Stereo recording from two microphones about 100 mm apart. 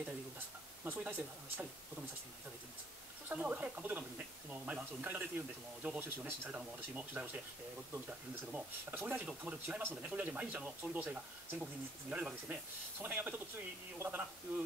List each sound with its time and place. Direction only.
0.8 s speech: 20° right (ahead or behind)
3.3 s speech: 15° right (ahead or behind)
6.5 s speech: 10° right (ahead or behind)
8.5 s speech: 15° right (ahead or behind)